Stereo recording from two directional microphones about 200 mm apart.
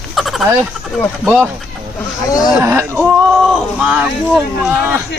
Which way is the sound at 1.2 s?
5° right (ahead or behind).